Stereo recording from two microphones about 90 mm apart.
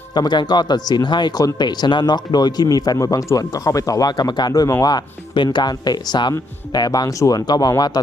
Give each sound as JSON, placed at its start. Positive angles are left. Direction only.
{"t": 0.1, "sound": "speech", "side_deg": 55}